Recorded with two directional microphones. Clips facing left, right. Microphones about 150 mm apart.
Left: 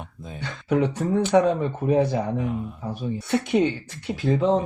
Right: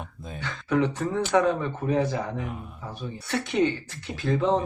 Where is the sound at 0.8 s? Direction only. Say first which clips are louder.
Left 2 dB; 15° left (ahead or behind).